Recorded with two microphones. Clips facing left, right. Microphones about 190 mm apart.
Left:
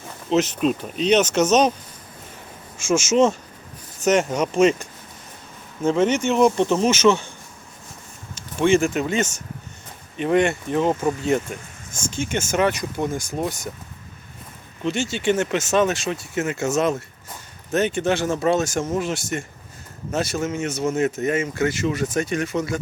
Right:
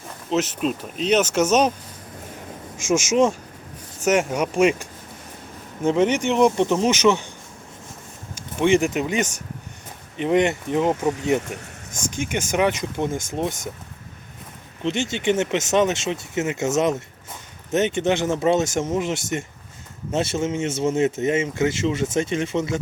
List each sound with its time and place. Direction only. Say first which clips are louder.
0.3 s speech: left 3 dB; centre (ahead or behind)
2.7 s speech: left 1 dB; 15° right (ahead or behind)
8.4 s speech: even; 15° right (ahead or behind)
14.8 s speech: even; 20° right (ahead or behind)